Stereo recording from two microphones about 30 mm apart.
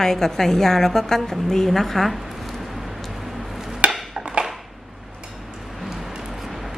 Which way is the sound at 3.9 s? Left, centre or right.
Right.